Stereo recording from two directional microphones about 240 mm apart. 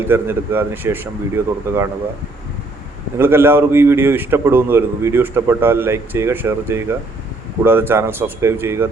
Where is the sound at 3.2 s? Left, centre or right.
Centre.